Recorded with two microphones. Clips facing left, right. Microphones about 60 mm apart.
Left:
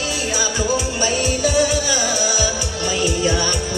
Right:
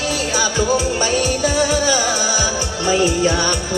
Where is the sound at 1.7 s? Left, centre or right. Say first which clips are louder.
Right 3 dB; right.